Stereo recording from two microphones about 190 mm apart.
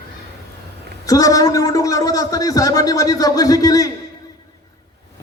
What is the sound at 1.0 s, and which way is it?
A man's voice, 20° left (ahead or behind).